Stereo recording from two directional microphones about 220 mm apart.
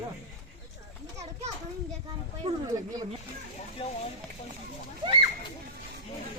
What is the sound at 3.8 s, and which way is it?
Speech, 25° left (ahead or behind).